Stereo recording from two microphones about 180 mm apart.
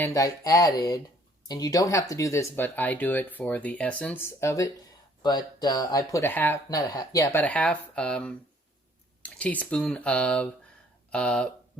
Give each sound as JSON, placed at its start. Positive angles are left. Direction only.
{"t": 0.0, "sound": "speech", "side_deg": 20}